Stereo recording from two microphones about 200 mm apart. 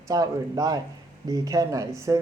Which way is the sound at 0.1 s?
20° right (ahead or behind).